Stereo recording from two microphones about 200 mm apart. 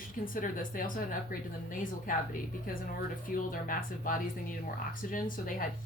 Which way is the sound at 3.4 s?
45° left (ahead or behind).